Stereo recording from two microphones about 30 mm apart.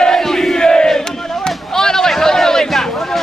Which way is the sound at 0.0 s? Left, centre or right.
Left.